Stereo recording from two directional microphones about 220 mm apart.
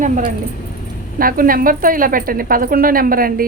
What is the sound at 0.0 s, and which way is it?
A woman's voice, 35° right (ahead or behind).